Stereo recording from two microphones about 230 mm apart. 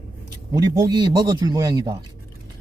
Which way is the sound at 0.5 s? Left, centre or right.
Centre.